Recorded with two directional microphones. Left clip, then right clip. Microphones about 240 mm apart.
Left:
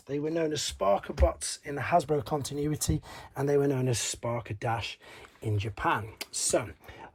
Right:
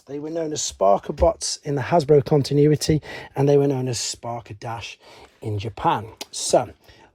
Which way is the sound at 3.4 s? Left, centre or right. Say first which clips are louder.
Right 9 dB; right.